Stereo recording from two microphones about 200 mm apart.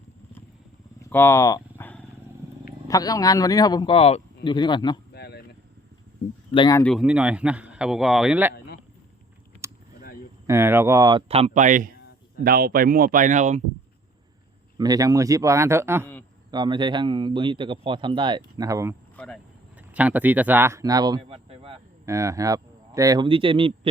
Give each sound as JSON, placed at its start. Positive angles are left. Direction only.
{"t": 1.1, "sound": "speech", "side_deg": 10}
{"t": 5.1, "sound": "a sound", "side_deg": 55}
{"t": 6.5, "sound": "speech", "side_deg": 20}
{"t": 6.8, "sound": "speech", "side_deg": 0}
{"t": 8.5, "sound": "a sound", "side_deg": 50}
{"t": 10.4, "sound": "speech", "side_deg": -15}
{"t": 11.3, "sound": "speech", "side_deg": -30}
{"t": 14.8, "sound": "speech", "side_deg": -20}
{"t": 19.1, "sound": "speech", "side_deg": 5}
{"t": 19.9, "sound": "speech", "side_deg": -5}
{"t": 21.2, "sound": "a sound", "side_deg": -30}
{"t": 22.0, "sound": "speech", "side_deg": -15}